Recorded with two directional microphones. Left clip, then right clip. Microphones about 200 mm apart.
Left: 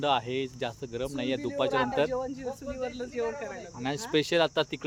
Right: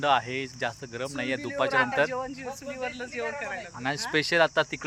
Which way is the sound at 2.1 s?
25° left (ahead or behind).